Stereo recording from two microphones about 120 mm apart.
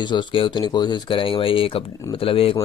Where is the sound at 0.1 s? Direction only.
45° left (ahead or behind).